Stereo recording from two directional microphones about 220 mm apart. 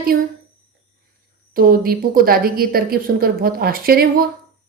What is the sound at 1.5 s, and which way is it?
A woman's voice, 40° right (ahead or behind).